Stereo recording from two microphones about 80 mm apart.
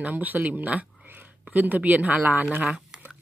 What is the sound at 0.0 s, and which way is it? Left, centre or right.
Speech, right.